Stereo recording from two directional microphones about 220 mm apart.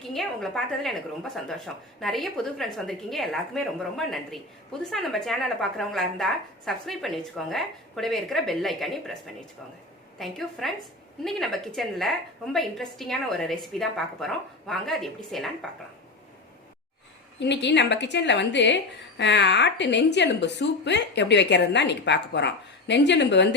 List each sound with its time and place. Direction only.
0.1 s speech: centre (ahead or behind)
17.4 s a woman's voice: 50° left (ahead or behind)